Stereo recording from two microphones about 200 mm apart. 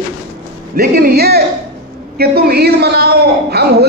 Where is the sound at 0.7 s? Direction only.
50° right (ahead or behind).